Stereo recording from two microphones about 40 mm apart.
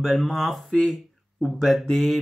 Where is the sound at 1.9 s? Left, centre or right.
Centre.